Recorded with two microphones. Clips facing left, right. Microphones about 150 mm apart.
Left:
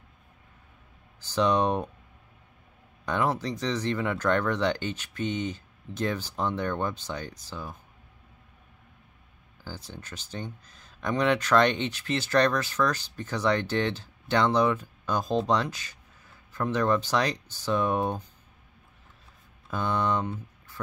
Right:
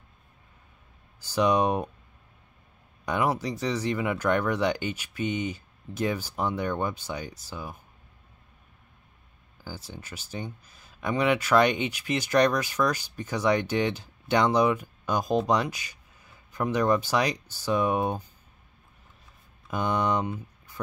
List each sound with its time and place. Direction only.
1.3 s speech: 10° right (ahead or behind)
3.1 s speech: 10° right (ahead or behind)
9.7 s speech: 5° right (ahead or behind)
19.7 s speech: 15° right (ahead or behind)